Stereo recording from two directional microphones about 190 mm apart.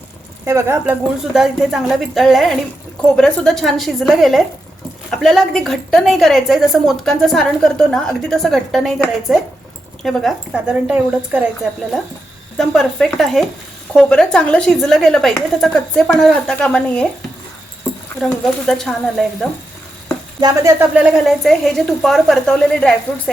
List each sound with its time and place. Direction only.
0.4 s speech: 15° right (ahead or behind)
1.2 s a woman's voice: centre (ahead or behind)
18.2 s a woman's voice: centre (ahead or behind)
20.4 s speech: 15° right (ahead or behind)
21.0 s a woman's voice: 5° right (ahead or behind)